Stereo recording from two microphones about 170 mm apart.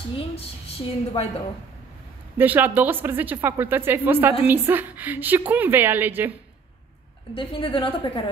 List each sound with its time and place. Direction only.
0.1 s a woman's voice: 35° left (ahead or behind)
2.3 s a woman's voice: 10° right (ahead or behind)
7.3 s a woman's voice: 30° left (ahead or behind)